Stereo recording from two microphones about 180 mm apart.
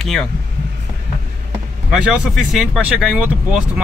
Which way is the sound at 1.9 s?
5° right (ahead or behind).